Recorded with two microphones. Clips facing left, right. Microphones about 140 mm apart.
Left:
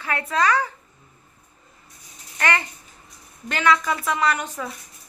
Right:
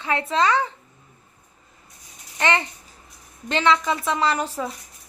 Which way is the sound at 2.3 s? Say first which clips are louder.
Right 2 dB; 25° right (ahead or behind).